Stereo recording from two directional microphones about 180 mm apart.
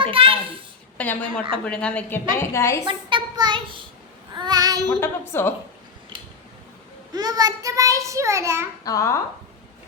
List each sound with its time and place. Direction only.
0.0 s a child's voice: 30° right (ahead or behind)
1.0 s a woman's voice: 10° left (ahead or behind)
2.8 s a child's voice: 25° right (ahead or behind)
4.4 s child singing: 20° right (ahead or behind)
4.9 s a woman's voice: 10° left (ahead or behind)
7.1 s a child's voice: 20° right (ahead or behind)
8.8 s speech: 20° left (ahead or behind)